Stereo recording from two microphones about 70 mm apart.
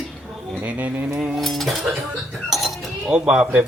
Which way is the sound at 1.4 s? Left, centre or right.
Centre.